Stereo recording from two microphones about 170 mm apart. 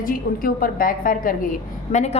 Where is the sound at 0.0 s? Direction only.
55° left (ahead or behind).